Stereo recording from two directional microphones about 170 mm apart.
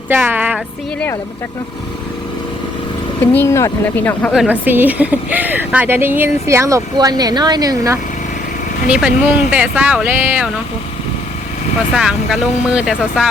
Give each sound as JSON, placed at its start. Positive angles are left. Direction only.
{"t": 0.1, "sound": "speech", "side_deg": -10}
{"t": 3.2, "sound": "speech", "side_deg": 15}
{"t": 4.3, "sound": "speech", "side_deg": -5}
{"t": 8.9, "sound": "speech", "side_deg": -5}
{"t": 11.9, "sound": "speech", "side_deg": -5}